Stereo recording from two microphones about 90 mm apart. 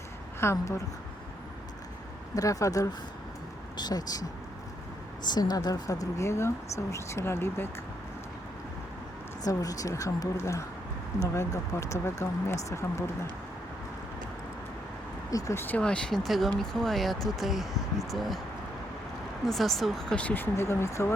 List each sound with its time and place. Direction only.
0.3 s a woman's voice: 30° left (ahead or behind)
2.3 s speech: 40° left (ahead or behind)
9.4 s speech: 40° left (ahead or behind)
15.3 s speech: 35° left (ahead or behind)
15.8 s speech: 10° left (ahead or behind)
19.5 s speech: centre (ahead or behind); by 21.1 s 30° left (ahead or behind)